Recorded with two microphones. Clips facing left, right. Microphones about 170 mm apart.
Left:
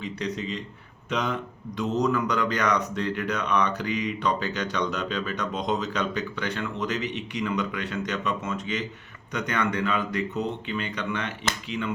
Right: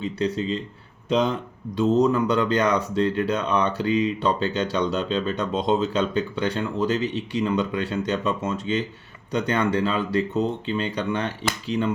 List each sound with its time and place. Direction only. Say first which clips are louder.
0.3 s speech: right 6 dB; 30° right (ahead or behind)